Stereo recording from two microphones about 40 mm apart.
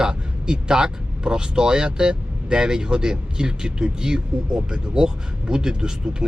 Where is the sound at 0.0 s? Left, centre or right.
Right.